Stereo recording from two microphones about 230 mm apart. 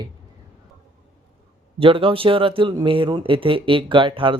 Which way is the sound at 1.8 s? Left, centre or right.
Right.